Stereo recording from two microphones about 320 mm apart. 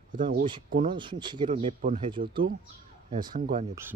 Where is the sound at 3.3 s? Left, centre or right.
Right.